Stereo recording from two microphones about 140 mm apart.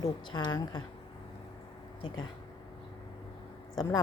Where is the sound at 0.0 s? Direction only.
30° left (ahead or behind).